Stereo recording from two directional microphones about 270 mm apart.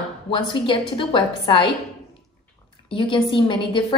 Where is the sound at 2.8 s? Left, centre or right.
Centre.